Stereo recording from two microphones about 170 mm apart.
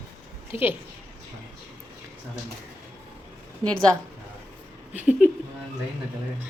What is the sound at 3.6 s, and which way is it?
Speech, 25° right (ahead or behind).